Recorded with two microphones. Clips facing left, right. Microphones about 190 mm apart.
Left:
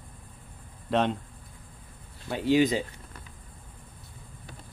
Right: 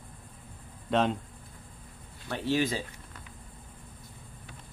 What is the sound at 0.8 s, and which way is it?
Speech, centre (ahead or behind).